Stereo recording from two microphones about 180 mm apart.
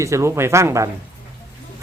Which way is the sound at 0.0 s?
15° right (ahead or behind).